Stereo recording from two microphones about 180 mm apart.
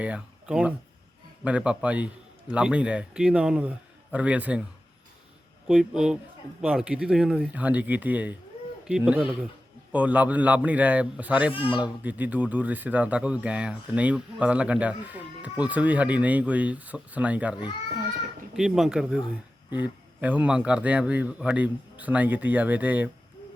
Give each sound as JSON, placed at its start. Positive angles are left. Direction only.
{"t": 0.0, "sound": "a man's voice", "side_deg": -5}
{"t": 5.6, "sound": "a man's voice", "side_deg": -5}
{"t": 11.5, "sound": "speech", "side_deg": 30}
{"t": 11.8, "sound": "a man's voice", "side_deg": -10}
{"t": 20.2, "sound": "speech", "side_deg": -10}